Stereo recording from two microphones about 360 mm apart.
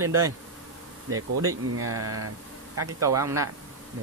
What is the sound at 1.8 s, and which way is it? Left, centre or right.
Speech, right.